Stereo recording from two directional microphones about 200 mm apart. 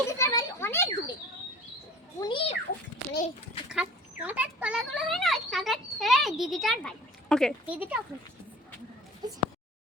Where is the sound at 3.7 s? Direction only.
10° right (ahead or behind).